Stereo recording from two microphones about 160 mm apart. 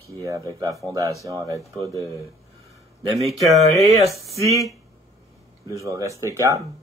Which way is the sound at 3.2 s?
Centre (ahead or behind).